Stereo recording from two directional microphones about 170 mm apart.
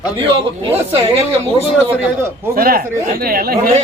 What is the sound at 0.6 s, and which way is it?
Speech, 35° right (ahead or behind).